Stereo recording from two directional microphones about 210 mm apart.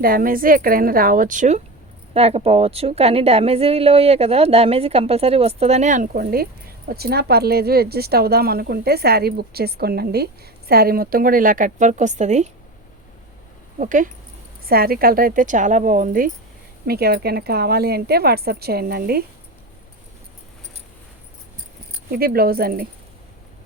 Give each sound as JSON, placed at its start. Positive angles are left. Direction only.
{"t": 0.0, "sound": "a woman's voice", "side_deg": -45}
{"t": 13.7, "sound": "a woman's voice", "side_deg": -40}
{"t": 22.1, "sound": "speech", "side_deg": -45}